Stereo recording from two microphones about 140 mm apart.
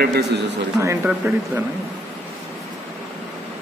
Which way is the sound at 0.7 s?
20° right (ahead or behind).